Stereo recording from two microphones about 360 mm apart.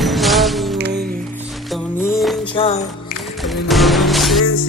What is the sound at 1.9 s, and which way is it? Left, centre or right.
Music, centre.